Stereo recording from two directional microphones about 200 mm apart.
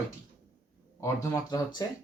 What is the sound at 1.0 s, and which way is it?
Speech, 15° left (ahead or behind).